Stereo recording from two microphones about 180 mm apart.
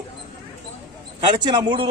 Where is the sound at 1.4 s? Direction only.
25° right (ahead or behind).